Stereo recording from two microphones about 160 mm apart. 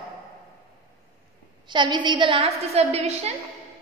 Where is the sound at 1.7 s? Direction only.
30° right (ahead or behind).